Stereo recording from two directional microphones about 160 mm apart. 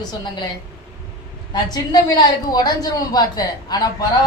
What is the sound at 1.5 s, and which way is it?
A woman's voice, 25° left (ahead or behind).